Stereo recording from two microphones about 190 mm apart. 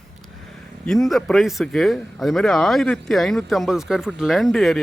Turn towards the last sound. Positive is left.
turn(degrees=0)  # may be behind; listen again after turning